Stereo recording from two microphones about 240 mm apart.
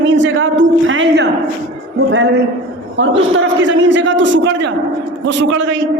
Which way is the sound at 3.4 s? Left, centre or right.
Right.